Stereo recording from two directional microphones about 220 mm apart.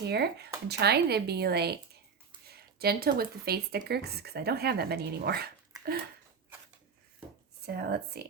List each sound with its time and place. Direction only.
0.0 s speech: 50° right (ahead or behind)
5.7 s a sound: 15° right (ahead or behind)
7.6 s speech: 45° right (ahead or behind)